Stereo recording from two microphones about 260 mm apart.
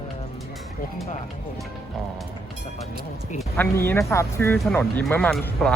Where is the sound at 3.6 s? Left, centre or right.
Centre.